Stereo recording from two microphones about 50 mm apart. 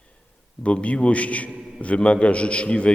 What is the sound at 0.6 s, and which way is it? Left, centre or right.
Speech, left.